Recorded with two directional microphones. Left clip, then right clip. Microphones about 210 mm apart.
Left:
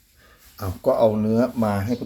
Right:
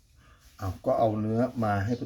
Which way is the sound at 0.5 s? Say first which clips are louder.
Left 6 dB; 30° left (ahead or behind).